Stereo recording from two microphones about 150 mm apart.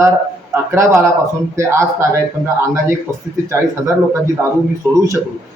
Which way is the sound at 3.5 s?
20° right (ahead or behind).